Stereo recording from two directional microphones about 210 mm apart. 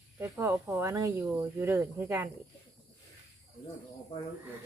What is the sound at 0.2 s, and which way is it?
Speech, 10° right (ahead or behind).